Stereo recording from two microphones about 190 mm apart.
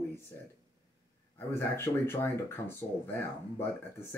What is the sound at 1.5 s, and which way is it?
Speech, 15° left (ahead or behind).